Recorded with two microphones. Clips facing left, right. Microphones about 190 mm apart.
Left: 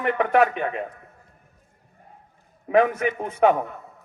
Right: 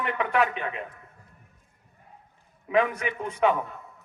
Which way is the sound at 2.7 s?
45° left (ahead or behind).